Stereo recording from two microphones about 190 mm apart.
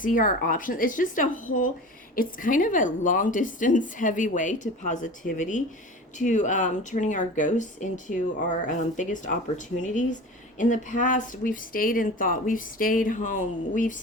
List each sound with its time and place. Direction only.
0.0 s a woman's voice: 45° left (ahead or behind)